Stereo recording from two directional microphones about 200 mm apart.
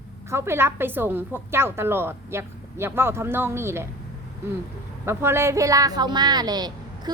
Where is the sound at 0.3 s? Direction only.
10° right (ahead or behind).